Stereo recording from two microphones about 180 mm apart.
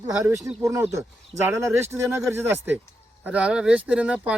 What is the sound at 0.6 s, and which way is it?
Speech, 15° right (ahead or behind).